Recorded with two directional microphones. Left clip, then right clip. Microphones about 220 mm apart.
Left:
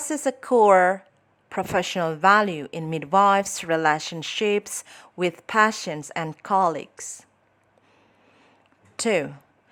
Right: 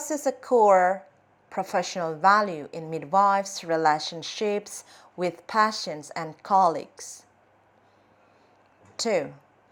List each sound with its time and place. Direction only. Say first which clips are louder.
0.0 s a woman's voice: left 1 dB; 25° left (ahead or behind)
0.4 s a woman's voice: left 2 dB; 40° left (ahead or behind)
0.7 s a woman's voice: left 2 dB; 25° left (ahead or behind)
1.8 s a woman's voice: left 2 dB; 45° left (ahead or behind)
9.0 s speech: left 3 dB; 25° left (ahead or behind)